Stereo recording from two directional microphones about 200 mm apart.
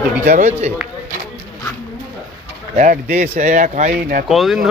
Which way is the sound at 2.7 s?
40° right (ahead or behind).